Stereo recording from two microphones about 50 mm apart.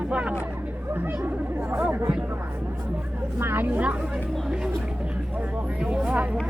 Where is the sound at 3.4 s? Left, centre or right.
Right.